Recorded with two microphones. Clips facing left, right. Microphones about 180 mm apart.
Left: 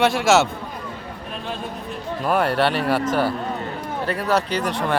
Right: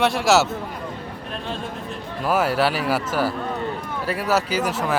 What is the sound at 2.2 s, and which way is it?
Speech, 5° right (ahead or behind).